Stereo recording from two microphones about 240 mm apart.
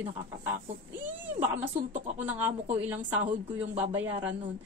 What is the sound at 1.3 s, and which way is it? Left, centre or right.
Speech, right.